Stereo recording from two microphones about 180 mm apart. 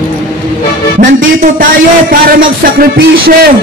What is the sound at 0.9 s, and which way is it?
Speech, 50° right (ahead or behind).